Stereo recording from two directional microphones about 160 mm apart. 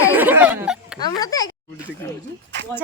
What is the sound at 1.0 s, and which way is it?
Speech, 25° left (ahead or behind).